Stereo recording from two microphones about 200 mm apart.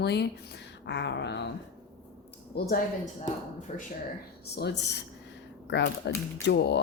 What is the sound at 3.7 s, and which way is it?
Speech, 35° left (ahead or behind).